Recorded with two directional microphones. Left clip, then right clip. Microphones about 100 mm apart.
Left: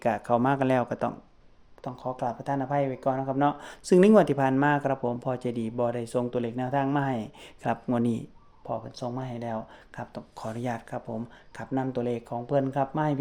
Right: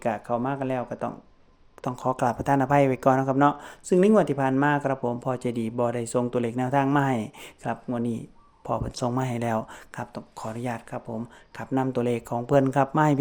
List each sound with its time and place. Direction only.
0.2 s speech: 15° left (ahead or behind)
1.8 s speech: 65° right (ahead or behind)
3.2 s speech: 35° right (ahead or behind)
3.8 s speech: 5° left (ahead or behind); by 7.5 s 25° right (ahead or behind)
7.9 s speech: 15° left (ahead or behind)
8.6 s speech: 50° right (ahead or behind)
9.9 s speech: 25° right (ahead or behind)
10.3 s speech: 10° right (ahead or behind)
11.7 s speech: 30° right (ahead or behind)